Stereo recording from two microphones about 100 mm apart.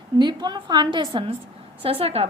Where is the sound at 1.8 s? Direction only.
75° right (ahead or behind).